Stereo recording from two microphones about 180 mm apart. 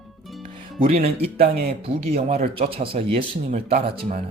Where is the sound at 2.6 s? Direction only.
30° right (ahead or behind).